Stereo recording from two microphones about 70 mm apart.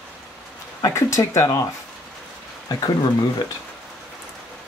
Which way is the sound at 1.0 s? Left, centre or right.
Left.